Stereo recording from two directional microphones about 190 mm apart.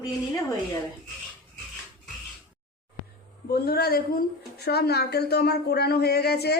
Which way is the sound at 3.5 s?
55° left (ahead or behind).